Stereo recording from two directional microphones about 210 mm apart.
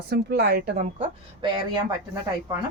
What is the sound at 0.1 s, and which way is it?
Speech, 50° right (ahead or behind).